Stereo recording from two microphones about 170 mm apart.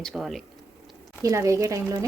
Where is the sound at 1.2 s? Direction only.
20° right (ahead or behind).